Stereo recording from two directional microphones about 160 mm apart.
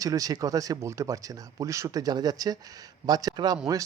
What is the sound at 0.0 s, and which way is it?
Speech, 20° right (ahead or behind).